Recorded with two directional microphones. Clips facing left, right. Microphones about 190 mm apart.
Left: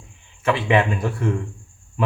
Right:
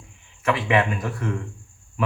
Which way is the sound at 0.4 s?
25° left (ahead or behind).